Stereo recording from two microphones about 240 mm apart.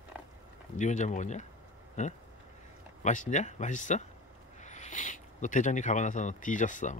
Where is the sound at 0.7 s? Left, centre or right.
Left.